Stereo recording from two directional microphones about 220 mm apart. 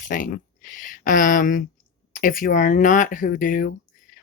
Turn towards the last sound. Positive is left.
turn(degrees=40)  # may be behind; listen again after turning